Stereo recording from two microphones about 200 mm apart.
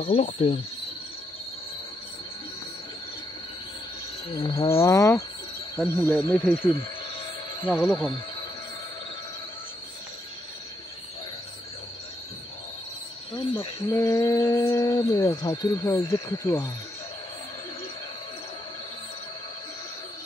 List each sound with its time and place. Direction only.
0.0 s speech: 30° left (ahead or behind)
4.3 s speech: 25° left (ahead or behind)
6.5 s speech: 25° left (ahead or behind)
13.3 s speech: 25° left (ahead or behind)